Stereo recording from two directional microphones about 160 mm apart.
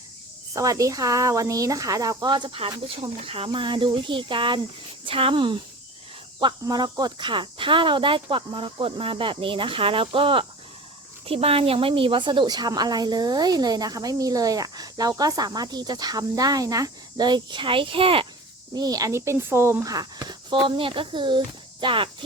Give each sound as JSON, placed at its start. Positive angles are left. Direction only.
{"t": 0.5, "sound": "speech", "side_deg": -20}
{"t": 18.7, "sound": "speech", "side_deg": -25}